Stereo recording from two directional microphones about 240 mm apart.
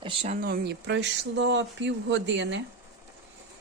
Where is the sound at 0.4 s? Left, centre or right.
Right.